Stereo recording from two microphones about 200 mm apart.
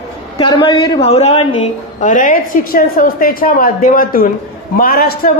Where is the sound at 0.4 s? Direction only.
25° left (ahead or behind).